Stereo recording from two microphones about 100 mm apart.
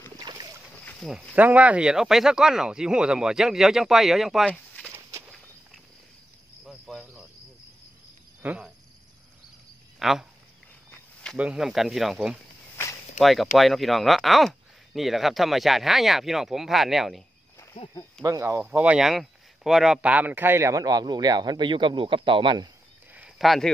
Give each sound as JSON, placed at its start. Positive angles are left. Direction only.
{"t": 0.2, "sound": "boat", "side_deg": -40}
{"t": 1.3, "sound": "speech", "side_deg": -15}
{"t": 4.5, "sound": "a sound", "side_deg": 10}
{"t": 6.6, "sound": "cricket", "side_deg": 0}
{"t": 8.4, "sound": "speech", "side_deg": -15}
{"t": 9.9, "sound": "a sound", "side_deg": -5}
{"t": 11.3, "sound": "speech", "side_deg": -10}
{"t": 18.2, "sound": "speech", "side_deg": -30}
{"t": 18.6, "sound": "speech", "side_deg": -15}
{"t": 18.9, "sound": "speech", "side_deg": -5}
{"t": 23.1, "sound": "a sound", "side_deg": -5}